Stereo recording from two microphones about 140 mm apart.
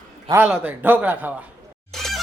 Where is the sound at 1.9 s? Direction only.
Centre (ahead or behind).